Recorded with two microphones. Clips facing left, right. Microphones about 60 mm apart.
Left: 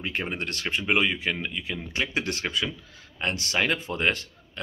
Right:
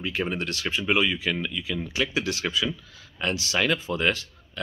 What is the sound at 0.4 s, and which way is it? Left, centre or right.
Speech, left.